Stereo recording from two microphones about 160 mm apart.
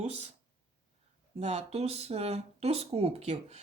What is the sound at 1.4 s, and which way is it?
Speech, 45° right (ahead or behind).